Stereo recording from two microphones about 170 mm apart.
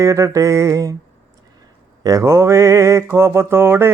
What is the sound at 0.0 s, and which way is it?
Mantra, 20° right (ahead or behind).